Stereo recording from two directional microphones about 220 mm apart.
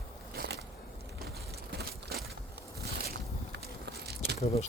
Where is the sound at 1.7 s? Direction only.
45° right (ahead or behind).